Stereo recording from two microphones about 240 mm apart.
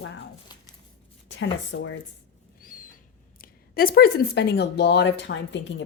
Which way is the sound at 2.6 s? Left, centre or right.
Left.